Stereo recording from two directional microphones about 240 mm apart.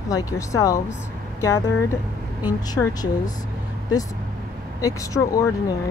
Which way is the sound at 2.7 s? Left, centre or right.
Centre.